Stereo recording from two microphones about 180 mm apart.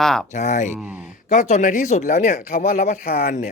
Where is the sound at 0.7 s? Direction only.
5° right (ahead or behind).